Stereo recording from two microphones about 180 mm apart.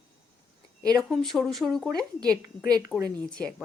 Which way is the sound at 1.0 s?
Centre (ahead or behind).